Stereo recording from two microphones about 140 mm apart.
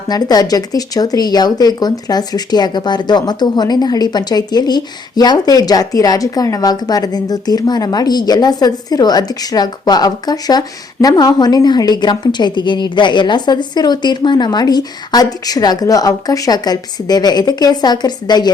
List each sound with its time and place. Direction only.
0.1 s speech: 30° left (ahead or behind)